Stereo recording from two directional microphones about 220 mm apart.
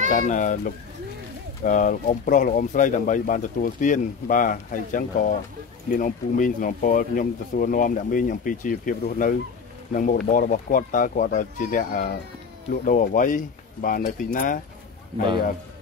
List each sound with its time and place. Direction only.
0.1 s speech: 35° left (ahead or behind)